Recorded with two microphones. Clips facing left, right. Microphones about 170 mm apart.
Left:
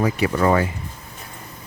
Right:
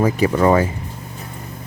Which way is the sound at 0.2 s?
35° right (ahead or behind).